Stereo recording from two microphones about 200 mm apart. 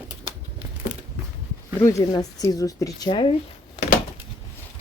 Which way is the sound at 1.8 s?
15° left (ahead or behind).